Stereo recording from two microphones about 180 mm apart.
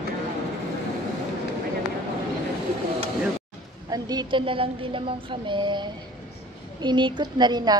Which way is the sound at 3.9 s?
20° right (ahead or behind).